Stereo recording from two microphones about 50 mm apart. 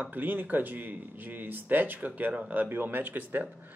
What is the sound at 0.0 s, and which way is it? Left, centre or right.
Speech, right.